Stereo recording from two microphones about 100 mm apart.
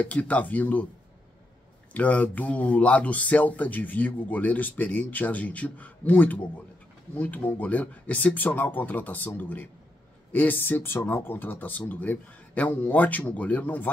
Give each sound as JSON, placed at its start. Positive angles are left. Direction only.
{"t": 0.0, "sound": "speech", "side_deg": 15}
{"t": 1.9, "sound": "speech", "side_deg": 15}